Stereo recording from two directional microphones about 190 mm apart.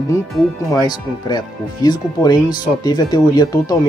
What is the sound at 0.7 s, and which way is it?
Speech, 20° left (ahead or behind).